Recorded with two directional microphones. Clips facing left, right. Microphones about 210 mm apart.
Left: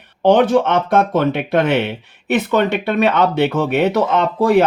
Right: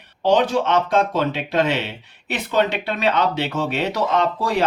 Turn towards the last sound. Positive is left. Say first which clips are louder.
# left 7 dB
turn(degrees=55)  # may be behind; listen again after turning